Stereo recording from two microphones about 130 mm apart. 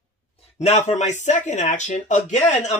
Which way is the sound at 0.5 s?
60° left (ahead or behind).